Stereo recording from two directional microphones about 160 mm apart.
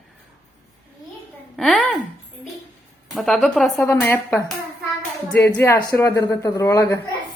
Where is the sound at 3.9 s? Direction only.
15° left (ahead or behind).